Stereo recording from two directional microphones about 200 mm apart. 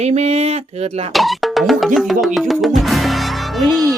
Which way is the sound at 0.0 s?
30° right (ahead or behind).